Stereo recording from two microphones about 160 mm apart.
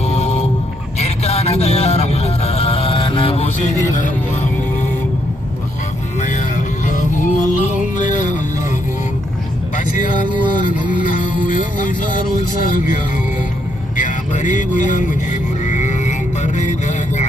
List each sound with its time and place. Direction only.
0.0 s vehicle: 40° left (ahead or behind)
0.9 s music: 40° left (ahead or behind)
3.9 s speech: 50° left (ahead or behind)
6.1 s music: 50° left (ahead or behind)
9.7 s music: 55° left (ahead or behind)
13.9 s music: 50° left (ahead or behind)